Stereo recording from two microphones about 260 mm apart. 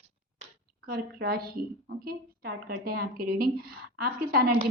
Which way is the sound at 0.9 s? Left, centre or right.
Right.